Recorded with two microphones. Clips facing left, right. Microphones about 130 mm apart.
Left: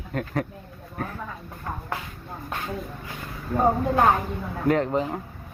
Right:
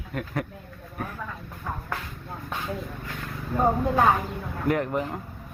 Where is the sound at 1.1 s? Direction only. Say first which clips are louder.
Left 1 dB; 15° left (ahead or behind).